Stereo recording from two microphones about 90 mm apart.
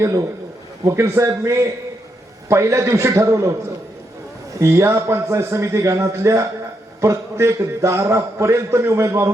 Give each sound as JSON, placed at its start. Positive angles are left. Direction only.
{"t": 0.0, "sound": "a man's voice", "side_deg": -40}
{"t": 4.6, "sound": "a man's voice", "side_deg": -30}